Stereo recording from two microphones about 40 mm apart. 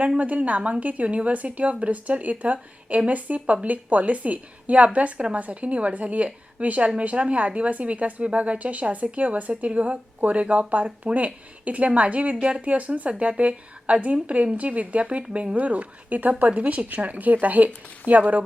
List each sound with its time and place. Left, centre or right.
0.2 s speech: right